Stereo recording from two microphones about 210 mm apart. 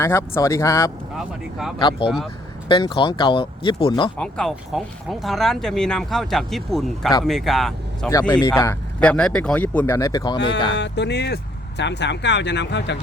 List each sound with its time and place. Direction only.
0.0 s speech: 10° left (ahead or behind)
1.2 s speech: 5° right (ahead or behind)
1.8 s speech: 25° left (ahead or behind)
4.2 s speech: 5° left (ahead or behind)
8.3 s speech: 15° left (ahead or behind)
10.8 s speech: 55° left (ahead or behind)